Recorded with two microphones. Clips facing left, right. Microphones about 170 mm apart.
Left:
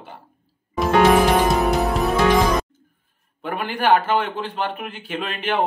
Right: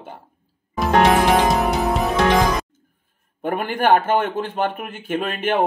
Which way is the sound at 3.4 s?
50° right (ahead or behind).